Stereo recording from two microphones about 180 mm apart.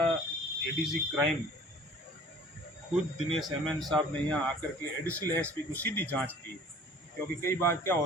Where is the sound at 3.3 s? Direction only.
Centre (ahead or behind).